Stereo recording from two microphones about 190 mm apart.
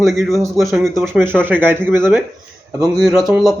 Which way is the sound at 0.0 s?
Centre (ahead or behind).